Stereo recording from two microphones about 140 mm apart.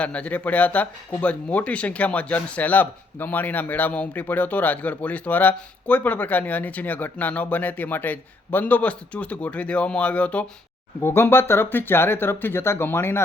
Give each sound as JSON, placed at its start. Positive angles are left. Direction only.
{"t": 0.0, "sound": "speech", "side_deg": 10}